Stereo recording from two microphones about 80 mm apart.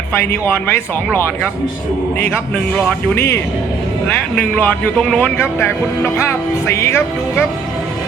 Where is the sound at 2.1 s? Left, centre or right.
Left.